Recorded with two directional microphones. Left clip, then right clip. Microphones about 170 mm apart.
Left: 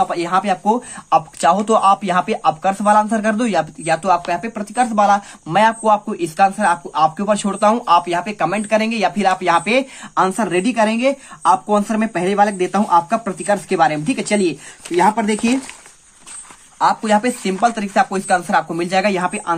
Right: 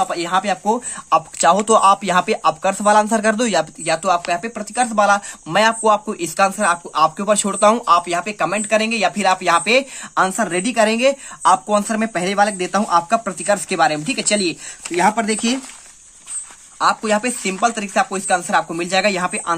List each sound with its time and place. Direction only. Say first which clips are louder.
0.0 s speech: left 1 dB; 20° right (ahead or behind)
16.7 s speech: left 2 dB; 20° right (ahead or behind)